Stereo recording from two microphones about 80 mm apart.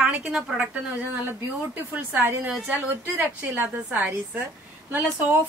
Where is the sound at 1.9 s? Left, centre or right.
Right.